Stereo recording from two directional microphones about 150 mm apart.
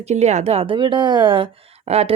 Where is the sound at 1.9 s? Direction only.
45° right (ahead or behind).